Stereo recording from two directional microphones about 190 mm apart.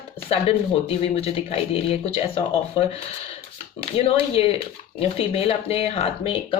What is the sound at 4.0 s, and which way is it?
Speech, 30° left (ahead or behind).